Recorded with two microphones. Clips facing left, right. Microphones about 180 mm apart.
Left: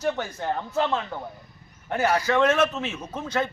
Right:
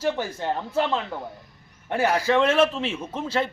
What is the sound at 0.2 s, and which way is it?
Speech, 30° right (ahead or behind).